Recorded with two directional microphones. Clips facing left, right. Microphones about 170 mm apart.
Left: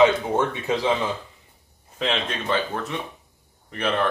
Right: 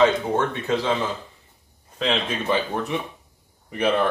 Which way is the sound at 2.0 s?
Centre (ahead or behind).